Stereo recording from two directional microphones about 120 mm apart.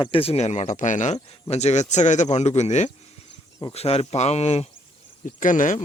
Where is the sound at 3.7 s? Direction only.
55° left (ahead or behind).